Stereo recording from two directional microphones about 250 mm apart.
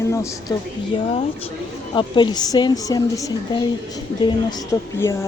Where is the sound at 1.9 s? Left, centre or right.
Centre.